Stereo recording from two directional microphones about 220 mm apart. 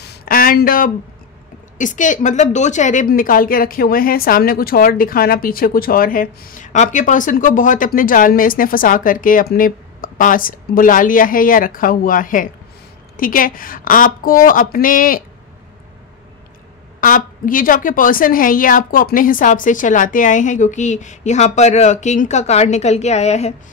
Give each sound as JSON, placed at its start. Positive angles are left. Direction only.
{"t": 0.0, "sound": "a sound", "side_deg": 45}
{"t": 1.8, "sound": "a woman's voice", "side_deg": 35}
{"t": 17.0, "sound": "a woman's voice", "side_deg": 40}